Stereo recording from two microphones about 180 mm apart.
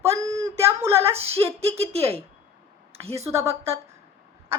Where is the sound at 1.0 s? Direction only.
35° right (ahead or behind).